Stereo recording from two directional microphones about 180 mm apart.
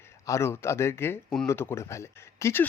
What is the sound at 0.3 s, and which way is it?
Speech, 15° left (ahead or behind).